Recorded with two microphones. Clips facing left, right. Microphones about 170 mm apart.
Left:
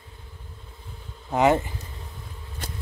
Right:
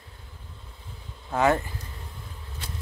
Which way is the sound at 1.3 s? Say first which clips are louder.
Left 3 dB; 20° left (ahead or behind).